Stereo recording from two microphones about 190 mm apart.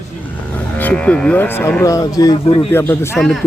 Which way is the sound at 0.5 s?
10° left (ahead or behind).